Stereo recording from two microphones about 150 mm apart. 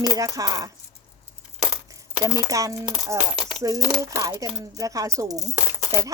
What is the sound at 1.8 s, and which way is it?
Crushing, 20° right (ahead or behind).